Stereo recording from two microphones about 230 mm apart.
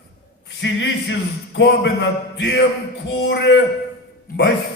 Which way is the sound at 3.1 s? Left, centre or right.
Left.